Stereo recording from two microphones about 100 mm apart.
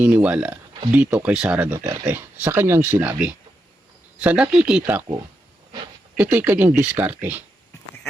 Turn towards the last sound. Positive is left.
turn(degrees=-15)  # may be behind; listen again after turning